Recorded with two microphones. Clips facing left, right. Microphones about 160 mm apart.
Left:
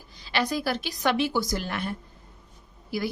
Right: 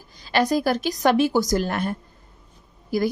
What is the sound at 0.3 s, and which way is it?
A woman's voice, 45° right (ahead or behind).